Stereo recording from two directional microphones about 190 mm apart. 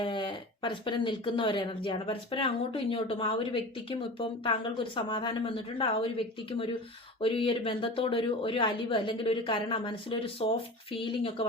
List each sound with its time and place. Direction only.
0.0 s speech: 25° left (ahead or behind)